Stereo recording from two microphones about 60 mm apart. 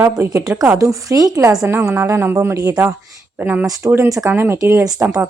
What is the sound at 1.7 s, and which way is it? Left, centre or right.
Speech, right.